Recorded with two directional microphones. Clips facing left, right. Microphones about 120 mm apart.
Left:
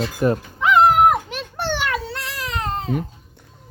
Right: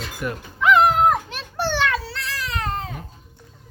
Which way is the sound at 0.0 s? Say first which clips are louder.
Left 9 dB; 30° left (ahead or behind).